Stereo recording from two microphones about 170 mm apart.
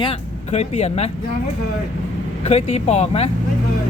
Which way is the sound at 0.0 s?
35° left (ahead or behind).